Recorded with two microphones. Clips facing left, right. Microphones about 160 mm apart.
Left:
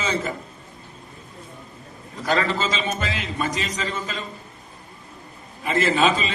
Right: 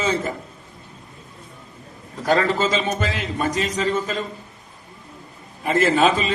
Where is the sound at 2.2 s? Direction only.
50° right (ahead or behind).